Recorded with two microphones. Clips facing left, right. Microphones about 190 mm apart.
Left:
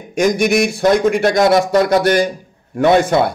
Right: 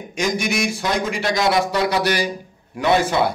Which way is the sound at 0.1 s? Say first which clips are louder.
Left 8 dB; 55° left (ahead or behind).